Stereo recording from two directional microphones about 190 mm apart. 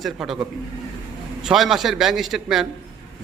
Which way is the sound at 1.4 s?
Centre (ahead or behind).